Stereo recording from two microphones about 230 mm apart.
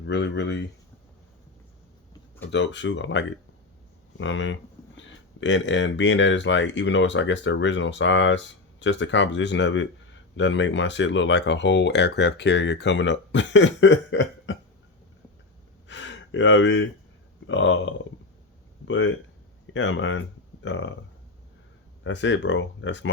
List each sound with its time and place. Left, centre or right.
0.0 s speech: left
2.5 s speech: left
15.9 s gasp: left
17.4 s speech: left
22.0 s speech: left